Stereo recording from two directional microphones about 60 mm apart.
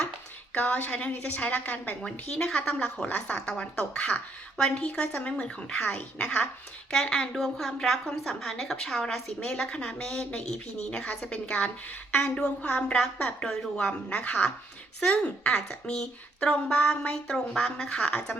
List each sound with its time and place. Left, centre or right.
0.5 s a woman's voice: left
2.0 s a woman's voice: centre